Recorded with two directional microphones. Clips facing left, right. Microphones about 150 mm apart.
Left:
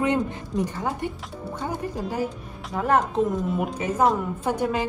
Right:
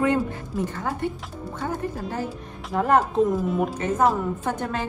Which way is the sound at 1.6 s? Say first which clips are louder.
Right 1 dB; 10° left (ahead or behind).